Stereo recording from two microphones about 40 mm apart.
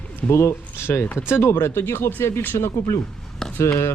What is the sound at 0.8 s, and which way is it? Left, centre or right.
Speech, left.